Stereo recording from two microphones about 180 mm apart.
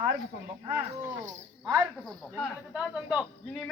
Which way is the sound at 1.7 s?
Centre (ahead or behind).